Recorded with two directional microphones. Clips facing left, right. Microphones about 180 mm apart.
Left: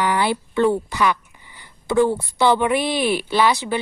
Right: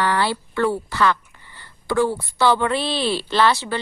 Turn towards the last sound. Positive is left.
turn(degrees=15)  # may be behind; listen again after turning